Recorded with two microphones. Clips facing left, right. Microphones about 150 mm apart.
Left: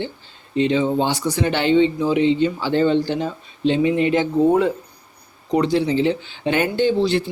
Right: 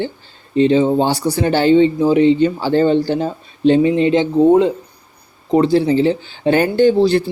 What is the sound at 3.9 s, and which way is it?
Speech, 30° right (ahead or behind).